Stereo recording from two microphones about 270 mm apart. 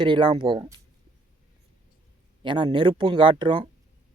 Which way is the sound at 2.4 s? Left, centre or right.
Centre.